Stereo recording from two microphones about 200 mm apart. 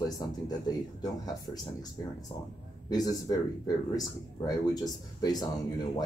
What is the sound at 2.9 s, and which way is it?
Speech, 20° left (ahead or behind).